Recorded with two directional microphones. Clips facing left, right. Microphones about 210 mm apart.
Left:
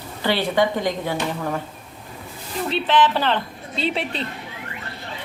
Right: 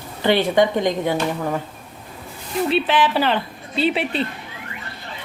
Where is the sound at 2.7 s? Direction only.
10° right (ahead or behind).